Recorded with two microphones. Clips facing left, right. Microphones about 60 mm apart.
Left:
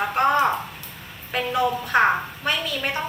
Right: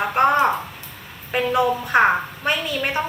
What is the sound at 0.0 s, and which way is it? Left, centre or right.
A woman's voice, right.